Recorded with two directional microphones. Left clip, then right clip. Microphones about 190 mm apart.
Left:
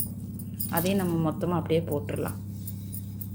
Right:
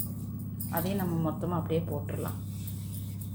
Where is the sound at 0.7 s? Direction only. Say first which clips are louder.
Left 5 dB; 40° left (ahead or behind).